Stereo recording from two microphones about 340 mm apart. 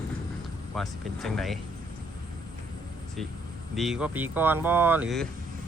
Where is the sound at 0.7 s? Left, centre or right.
Centre.